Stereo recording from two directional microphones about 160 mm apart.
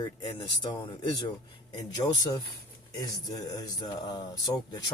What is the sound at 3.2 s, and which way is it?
Speech, 25° left (ahead or behind).